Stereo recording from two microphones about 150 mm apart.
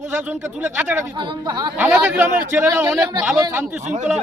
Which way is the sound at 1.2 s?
25° right (ahead or behind).